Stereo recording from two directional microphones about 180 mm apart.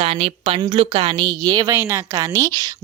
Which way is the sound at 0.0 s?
35° right (ahead or behind).